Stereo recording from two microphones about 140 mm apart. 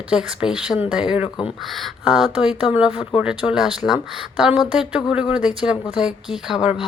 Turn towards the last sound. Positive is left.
turn(degrees=-5)  # may be behind; listen again after turning